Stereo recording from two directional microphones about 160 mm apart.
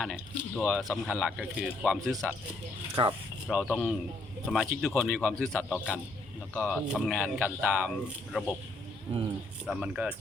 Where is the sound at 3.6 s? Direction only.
5° right (ahead or behind).